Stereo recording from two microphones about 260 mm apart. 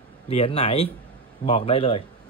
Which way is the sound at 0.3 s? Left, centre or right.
Left.